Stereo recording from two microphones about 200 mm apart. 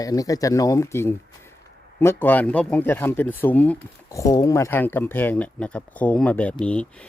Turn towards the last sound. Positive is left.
turn(degrees=5)  # may be behind; listen again after turning